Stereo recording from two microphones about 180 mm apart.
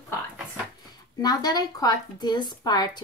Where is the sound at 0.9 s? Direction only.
20° left (ahead or behind).